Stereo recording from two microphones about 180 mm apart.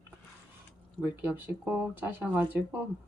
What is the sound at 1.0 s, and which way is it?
Speech, 10° right (ahead or behind).